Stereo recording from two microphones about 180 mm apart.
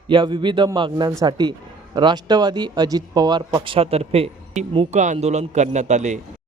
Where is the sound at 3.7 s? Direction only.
35° right (ahead or behind).